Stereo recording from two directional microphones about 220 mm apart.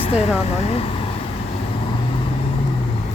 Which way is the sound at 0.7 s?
25° left (ahead or behind).